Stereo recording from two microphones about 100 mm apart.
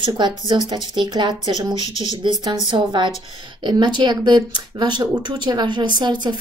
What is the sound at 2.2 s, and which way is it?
Speech, 50° right (ahead or behind).